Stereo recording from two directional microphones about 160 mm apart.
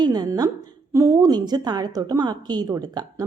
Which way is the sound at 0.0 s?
25° right (ahead or behind).